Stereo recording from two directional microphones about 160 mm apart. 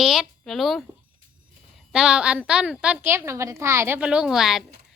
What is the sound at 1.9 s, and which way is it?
A woman's voice, 5° right (ahead or behind).